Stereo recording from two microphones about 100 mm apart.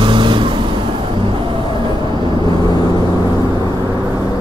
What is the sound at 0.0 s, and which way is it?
Vehicle, 55° right (ahead or behind).